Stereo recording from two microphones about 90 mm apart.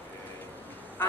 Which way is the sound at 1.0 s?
25° left (ahead or behind).